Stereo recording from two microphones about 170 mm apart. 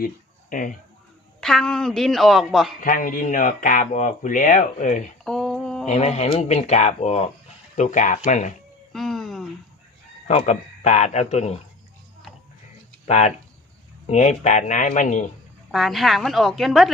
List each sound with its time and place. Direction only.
0.5 s speech: 50° left (ahead or behind)
1.4 s a woman's voice: 5° left (ahead or behind)
2.8 s speech: 50° left (ahead or behind)
5.2 s a sound: 5° left (ahead or behind)
5.8 s speech: 40° left (ahead or behind)
8.9 s music: centre (ahead or behind)
10.2 s speech: 40° left (ahead or behind)
13.1 s speech: 40° left (ahead or behind)
15.7 s a woman's voice: centre (ahead or behind)